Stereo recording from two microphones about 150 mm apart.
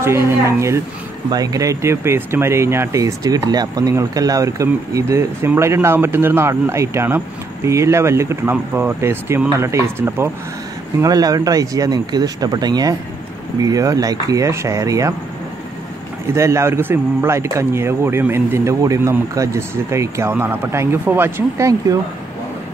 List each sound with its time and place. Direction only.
0.0 s speech: 15° right (ahead or behind)
16.3 s speech: 20° right (ahead or behind)